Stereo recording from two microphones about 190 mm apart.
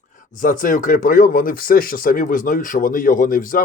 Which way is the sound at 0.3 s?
45° left (ahead or behind).